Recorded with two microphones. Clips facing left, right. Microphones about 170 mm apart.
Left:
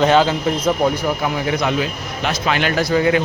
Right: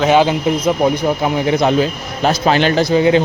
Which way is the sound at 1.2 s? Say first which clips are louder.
Right 7 dB; 25° right (ahead or behind).